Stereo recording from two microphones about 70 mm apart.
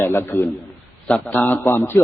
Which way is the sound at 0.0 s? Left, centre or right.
Left.